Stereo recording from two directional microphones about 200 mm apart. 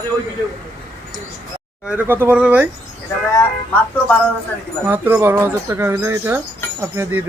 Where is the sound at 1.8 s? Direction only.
5° right (ahead or behind).